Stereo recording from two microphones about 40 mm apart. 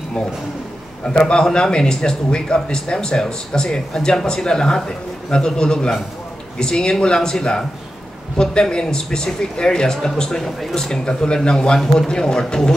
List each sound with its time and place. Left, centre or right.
1.0 s a man's voice: left